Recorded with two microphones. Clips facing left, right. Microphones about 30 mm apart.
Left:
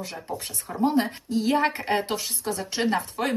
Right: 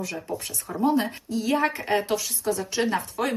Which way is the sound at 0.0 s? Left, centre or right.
Left.